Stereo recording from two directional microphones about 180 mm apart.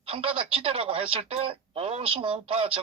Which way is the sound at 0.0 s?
30° right (ahead or behind).